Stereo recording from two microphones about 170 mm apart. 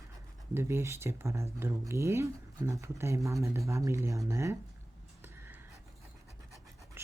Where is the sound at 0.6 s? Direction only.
15° right (ahead or behind).